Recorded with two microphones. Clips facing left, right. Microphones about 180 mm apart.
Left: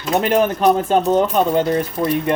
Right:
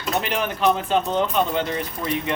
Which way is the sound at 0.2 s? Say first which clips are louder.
Left 8 dB; 45° left (ahead or behind).